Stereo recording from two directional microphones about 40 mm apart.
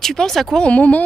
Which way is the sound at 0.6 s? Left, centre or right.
Left.